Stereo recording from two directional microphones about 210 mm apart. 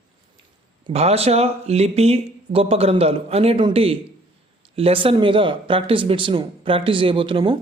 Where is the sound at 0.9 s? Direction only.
30° right (ahead or behind).